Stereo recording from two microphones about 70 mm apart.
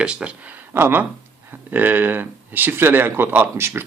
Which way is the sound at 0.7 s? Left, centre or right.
Right.